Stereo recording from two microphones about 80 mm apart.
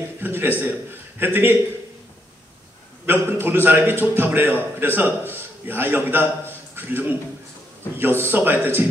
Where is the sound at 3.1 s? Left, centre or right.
Right.